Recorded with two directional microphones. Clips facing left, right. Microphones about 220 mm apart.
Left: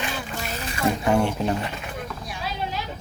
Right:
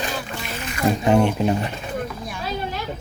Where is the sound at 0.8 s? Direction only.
20° right (ahead or behind).